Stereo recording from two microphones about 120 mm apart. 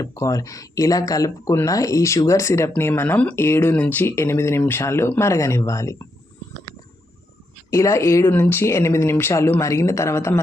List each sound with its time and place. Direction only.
0.0 s speech: 30° left (ahead or behind)
7.7 s speech: 25° left (ahead or behind)